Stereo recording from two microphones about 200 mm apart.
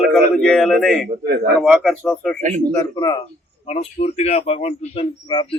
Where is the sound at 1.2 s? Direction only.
55° right (ahead or behind).